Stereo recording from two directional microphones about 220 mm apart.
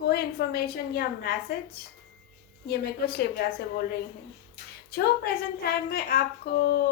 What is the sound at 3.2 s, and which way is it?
Speech, 45° left (ahead or behind).